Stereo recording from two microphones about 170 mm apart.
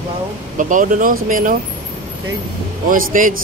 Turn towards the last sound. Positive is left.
turn(degrees=-50)  # may be behind; listen again after turning